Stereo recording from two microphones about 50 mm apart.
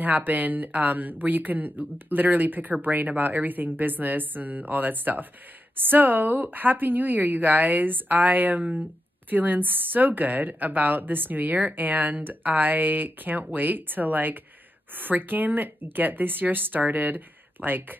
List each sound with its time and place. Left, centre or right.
0.0 s speech: right